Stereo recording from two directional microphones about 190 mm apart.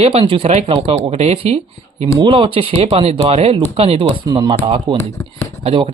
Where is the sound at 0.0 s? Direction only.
30° right (ahead or behind).